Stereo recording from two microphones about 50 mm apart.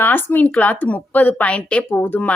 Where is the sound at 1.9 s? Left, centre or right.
Left.